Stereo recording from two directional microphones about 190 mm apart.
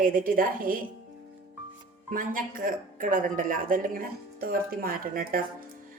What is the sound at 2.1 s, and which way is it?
A woman's voice, 45° right (ahead or behind).